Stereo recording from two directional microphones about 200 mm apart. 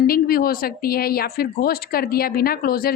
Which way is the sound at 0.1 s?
45° left (ahead or behind).